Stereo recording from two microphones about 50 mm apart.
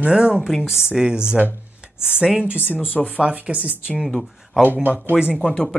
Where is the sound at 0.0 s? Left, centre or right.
Right.